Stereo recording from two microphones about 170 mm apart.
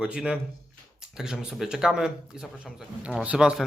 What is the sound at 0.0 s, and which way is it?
Speech, 5° right (ahead or behind).